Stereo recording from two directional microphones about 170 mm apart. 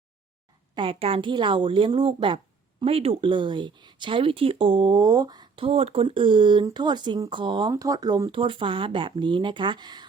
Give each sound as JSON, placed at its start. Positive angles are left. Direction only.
{"t": 0.8, "sound": "a woman's voice", "side_deg": -35}